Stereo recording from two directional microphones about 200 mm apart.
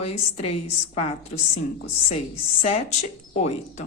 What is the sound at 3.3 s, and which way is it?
Speech, 35° left (ahead or behind).